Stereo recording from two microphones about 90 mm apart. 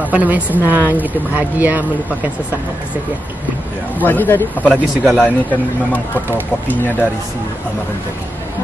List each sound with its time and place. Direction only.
0.0 s speech: 15° right (ahead or behind)
4.0 s speech: 20° left (ahead or behind)